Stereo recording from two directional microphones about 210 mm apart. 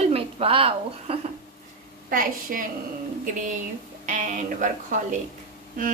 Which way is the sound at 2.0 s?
40° right (ahead or behind).